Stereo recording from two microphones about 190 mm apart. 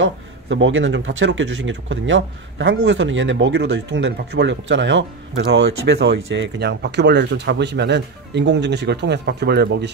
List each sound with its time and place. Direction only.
0.0 s speech: 85° right; by 9.9 s 65° right (ahead or behind)